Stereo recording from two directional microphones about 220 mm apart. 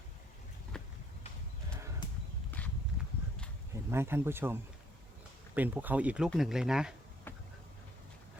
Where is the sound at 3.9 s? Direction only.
10° right (ahead or behind).